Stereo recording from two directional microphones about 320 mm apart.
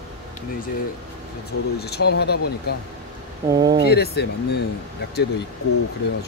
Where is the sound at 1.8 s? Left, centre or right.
Left.